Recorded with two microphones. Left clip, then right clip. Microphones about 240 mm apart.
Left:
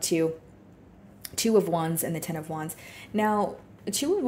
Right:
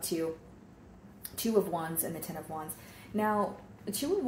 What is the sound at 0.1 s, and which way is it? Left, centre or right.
Speech, left.